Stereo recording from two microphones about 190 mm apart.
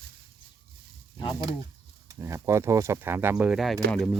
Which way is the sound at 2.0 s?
15° right (ahead or behind).